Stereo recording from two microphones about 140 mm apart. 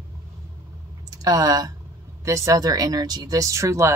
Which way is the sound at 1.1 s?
25° right (ahead or behind).